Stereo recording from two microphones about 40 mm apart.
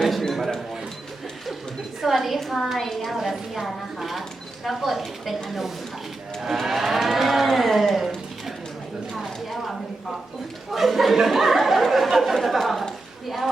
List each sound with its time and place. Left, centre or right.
0.0 s a sound: centre
2.0 s a woman's voice: centre
3.2 s a woman's voice: centre
6.4 s cattle: centre
9.1 s a sound: centre
10.7 s speech: centre